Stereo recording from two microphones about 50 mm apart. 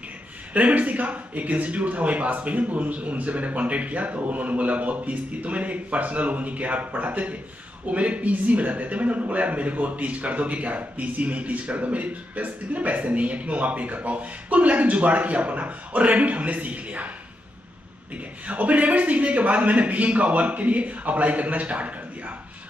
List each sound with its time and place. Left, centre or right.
0.5 s a man's voice: right
18.1 s a man's voice: right